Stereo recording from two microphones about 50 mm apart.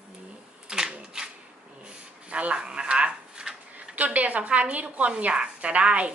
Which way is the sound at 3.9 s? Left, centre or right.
Right.